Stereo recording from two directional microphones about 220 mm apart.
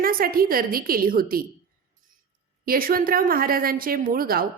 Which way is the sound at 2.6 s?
40° right (ahead or behind).